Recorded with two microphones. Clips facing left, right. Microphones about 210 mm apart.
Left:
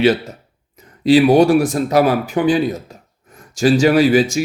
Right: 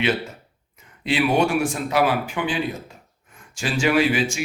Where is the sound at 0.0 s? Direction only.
40° left (ahead or behind).